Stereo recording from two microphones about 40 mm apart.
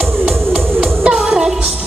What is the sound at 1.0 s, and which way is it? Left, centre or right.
Music, right.